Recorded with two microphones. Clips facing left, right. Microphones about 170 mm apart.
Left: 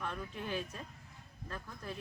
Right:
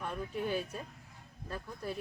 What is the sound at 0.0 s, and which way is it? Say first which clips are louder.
Speech: right 5 dB; 10° right (ahead or behind).